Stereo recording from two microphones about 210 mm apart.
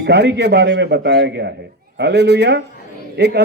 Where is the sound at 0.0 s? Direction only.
55° right (ahead or behind).